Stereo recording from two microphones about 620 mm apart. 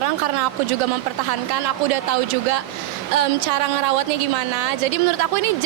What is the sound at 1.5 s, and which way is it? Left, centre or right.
A woman's voice, right.